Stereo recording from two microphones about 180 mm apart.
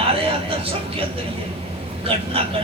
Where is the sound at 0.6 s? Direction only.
30° right (ahead or behind).